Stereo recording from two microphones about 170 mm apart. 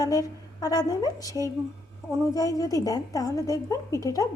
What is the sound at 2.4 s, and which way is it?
A woman's voice, 20° left (ahead or behind).